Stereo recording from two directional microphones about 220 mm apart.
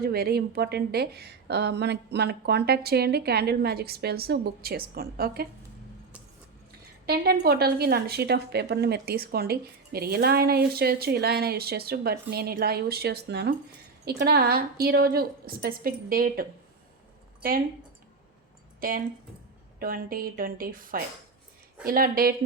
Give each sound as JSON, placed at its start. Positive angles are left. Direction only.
{"t": 0.0, "sound": "a woman's voice", "side_deg": -45}
{"t": 7.0, "sound": "a woman's voice", "side_deg": -45}
{"t": 19.8, "sound": "a woman's voice", "side_deg": -40}